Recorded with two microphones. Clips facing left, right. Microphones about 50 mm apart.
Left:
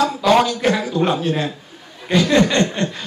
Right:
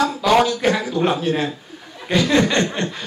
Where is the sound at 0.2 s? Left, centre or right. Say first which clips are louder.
Left 1 dB; centre.